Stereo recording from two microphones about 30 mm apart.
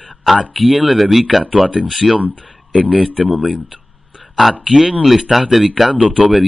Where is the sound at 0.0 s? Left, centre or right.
Centre.